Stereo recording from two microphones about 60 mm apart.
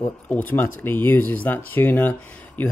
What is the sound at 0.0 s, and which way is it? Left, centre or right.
Speech, left.